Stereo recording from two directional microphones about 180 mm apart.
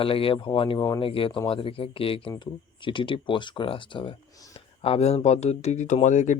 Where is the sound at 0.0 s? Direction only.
30° left (ahead or behind).